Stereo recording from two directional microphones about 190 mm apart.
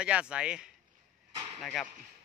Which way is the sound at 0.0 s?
5° right (ahead or behind).